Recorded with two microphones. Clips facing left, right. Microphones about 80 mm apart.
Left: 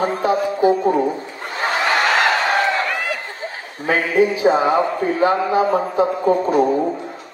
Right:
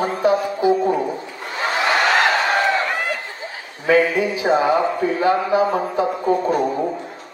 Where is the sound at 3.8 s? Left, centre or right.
Left.